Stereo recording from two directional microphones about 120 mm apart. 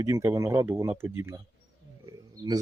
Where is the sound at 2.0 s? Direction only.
35° right (ahead or behind).